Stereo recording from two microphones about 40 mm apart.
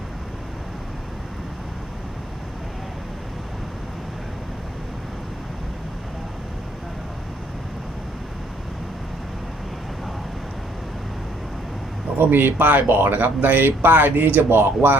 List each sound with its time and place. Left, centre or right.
12.3 s speech: right
14.6 s speech: right